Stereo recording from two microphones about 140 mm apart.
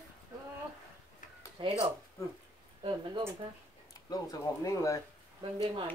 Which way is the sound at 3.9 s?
25° left (ahead or behind).